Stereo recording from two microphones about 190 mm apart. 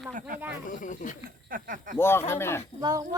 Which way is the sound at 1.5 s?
45° right (ahead or behind).